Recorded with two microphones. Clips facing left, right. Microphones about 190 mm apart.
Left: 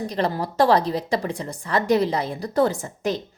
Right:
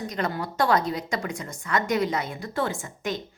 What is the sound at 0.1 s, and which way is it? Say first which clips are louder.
A woman's voice: left 5 dB; 35° left (ahead or behind).